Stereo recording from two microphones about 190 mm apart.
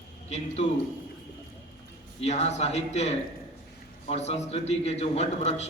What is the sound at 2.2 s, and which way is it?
A man's voice, 35° left (ahead or behind).